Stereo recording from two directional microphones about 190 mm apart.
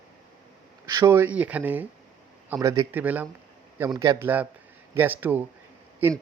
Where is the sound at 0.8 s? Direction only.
15° right (ahead or behind).